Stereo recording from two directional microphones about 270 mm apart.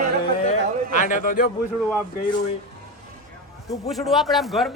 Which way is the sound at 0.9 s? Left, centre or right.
Left.